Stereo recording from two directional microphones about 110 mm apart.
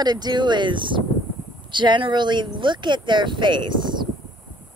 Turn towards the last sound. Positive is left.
turn(degrees=-45)  # may be behind; listen again after turning